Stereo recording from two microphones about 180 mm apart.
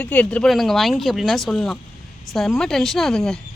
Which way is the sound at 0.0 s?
5° left (ahead or behind).